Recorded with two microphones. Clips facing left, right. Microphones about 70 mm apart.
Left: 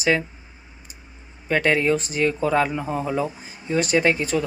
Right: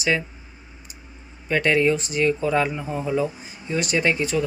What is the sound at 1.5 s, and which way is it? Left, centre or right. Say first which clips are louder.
Speech: even; left.